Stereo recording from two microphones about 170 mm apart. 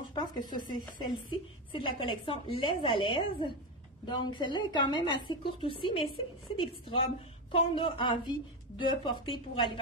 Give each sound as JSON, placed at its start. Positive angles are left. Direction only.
{"t": 0.1, "sound": "a woman's voice", "side_deg": 25}